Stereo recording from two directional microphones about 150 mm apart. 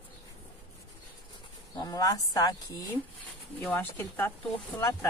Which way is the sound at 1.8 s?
25° left (ahead or behind).